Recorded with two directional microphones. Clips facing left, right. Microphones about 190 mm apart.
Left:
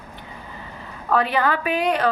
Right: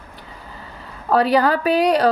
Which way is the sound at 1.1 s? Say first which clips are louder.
Right 5 dB; 35° right (ahead or behind).